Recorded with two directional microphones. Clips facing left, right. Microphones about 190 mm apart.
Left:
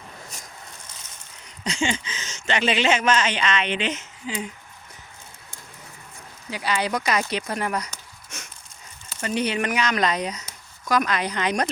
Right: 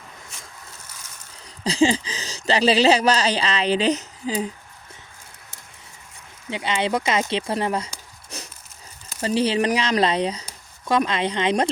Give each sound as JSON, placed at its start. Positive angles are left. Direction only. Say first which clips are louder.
{"t": 1.6, "sound": "speech", "louder": "right 7 dB", "side_deg": -35}
{"t": 6.5, "sound": "speech", "louder": "right 2 dB", "side_deg": -25}
{"t": 8.3, "sound": "a sound", "louder": "right 4 dB", "side_deg": -35}
{"t": 9.2, "sound": "speech", "louder": "right 4 dB", "side_deg": -30}